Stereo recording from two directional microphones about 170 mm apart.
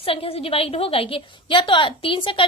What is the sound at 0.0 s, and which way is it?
A woman's voice, 35° left (ahead or behind).